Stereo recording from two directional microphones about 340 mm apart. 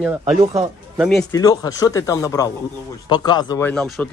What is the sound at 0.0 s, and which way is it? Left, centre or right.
Speech, centre.